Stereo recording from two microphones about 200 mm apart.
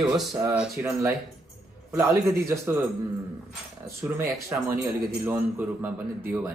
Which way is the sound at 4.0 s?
15° right (ahead or behind).